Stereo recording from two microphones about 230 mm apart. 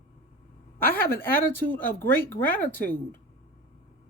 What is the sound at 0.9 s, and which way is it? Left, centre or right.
Speech, centre.